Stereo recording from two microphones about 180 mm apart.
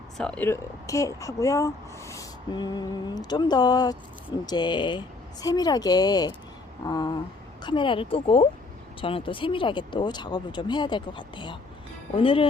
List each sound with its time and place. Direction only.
0.2 s speech: 5° left (ahead or behind); by 12.5 s 30° left (ahead or behind)